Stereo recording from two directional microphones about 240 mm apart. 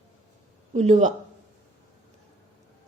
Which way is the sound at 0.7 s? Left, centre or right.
Right.